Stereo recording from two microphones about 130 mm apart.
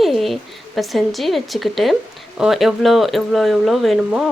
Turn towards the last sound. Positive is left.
turn(degrees=0)  # may be behind; listen again after turning